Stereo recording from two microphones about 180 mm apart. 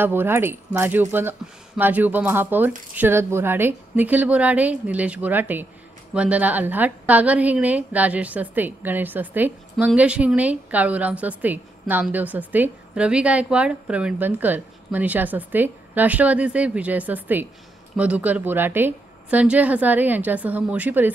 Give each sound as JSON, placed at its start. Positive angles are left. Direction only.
{"t": 0.0, "sound": "a woman's voice", "side_deg": -10}